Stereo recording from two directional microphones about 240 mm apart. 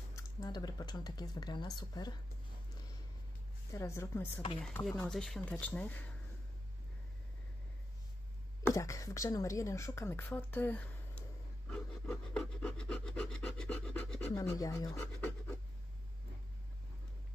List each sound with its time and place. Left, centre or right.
0.1 s speech: centre
3.7 s speech: centre
8.6 s speech: centre
11.7 s rub: centre